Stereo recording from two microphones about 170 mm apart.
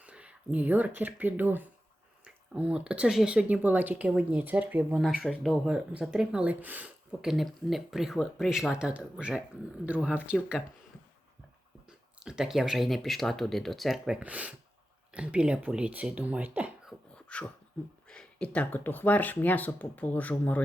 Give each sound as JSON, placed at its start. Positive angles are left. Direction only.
{"t": 0.0, "sound": "speech", "side_deg": -5}
{"t": 11.9, "sound": "speech", "side_deg": -5}
{"t": 17.2, "sound": "a sound", "side_deg": 5}
{"t": 18.1, "sound": "speech", "side_deg": 5}